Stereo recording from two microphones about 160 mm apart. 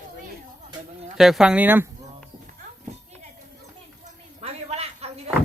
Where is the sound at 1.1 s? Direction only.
Centre (ahead or behind).